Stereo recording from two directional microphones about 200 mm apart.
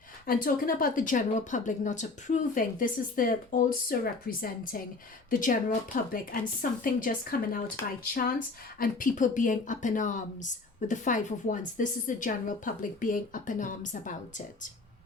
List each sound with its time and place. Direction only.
0.3 s speech: 45° left (ahead or behind)
8.8 s speech: 40° left (ahead or behind)